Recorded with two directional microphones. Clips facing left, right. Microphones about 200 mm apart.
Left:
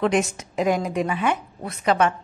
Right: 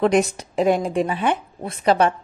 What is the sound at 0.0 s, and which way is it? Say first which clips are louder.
A woman's voice: right 4 dB; 35° right (ahead or behind).